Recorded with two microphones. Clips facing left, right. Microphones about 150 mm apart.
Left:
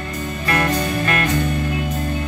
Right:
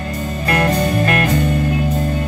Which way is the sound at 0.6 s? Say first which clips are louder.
Right 5 dB; 40° right (ahead or behind).